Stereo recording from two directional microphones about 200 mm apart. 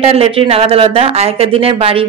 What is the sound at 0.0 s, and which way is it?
Speech, 30° right (ahead or behind).